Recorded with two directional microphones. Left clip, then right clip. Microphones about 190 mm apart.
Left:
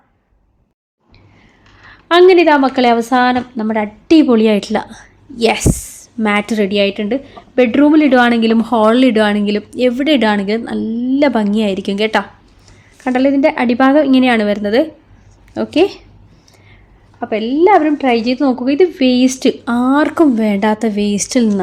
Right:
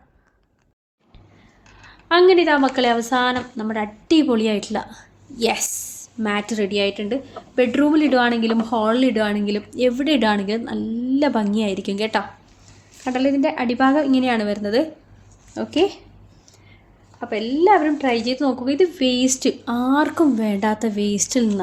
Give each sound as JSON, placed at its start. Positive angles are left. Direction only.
{"t": 1.9, "sound": "a woman's voice", "side_deg": 50}
{"t": 13.1, "sound": "a woman's voice", "side_deg": 55}
{"t": 15.5, "sound": "a woman's voice", "side_deg": 55}
{"t": 17.2, "sound": "a woman's voice", "side_deg": 55}